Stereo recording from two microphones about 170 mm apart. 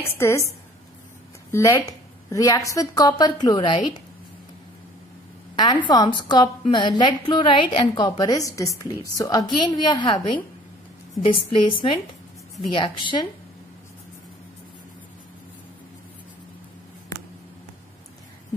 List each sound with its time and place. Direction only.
0.0 s a woman's voice: 15° left (ahead or behind)
1.5 s a woman's voice: 15° left (ahead or behind)
5.9 s a woman's voice: 25° left (ahead or behind)